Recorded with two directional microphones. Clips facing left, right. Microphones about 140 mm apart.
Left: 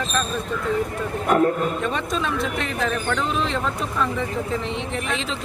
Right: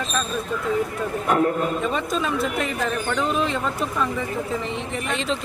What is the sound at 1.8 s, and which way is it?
Speech, centre (ahead or behind).